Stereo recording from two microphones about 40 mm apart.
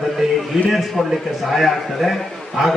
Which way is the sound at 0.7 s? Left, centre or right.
Centre.